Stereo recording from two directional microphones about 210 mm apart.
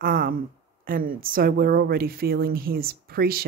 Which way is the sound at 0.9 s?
45° right (ahead or behind).